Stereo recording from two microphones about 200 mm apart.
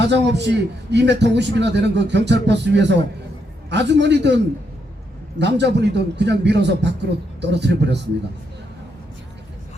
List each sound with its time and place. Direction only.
0.0 s a man's voice: 60° right (ahead or behind)
5.4 s a man's voice: 60° right (ahead or behind)